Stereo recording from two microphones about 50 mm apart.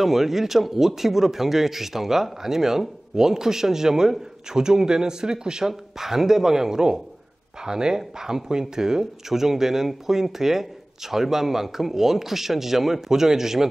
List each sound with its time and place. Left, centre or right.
0.0 s speech: centre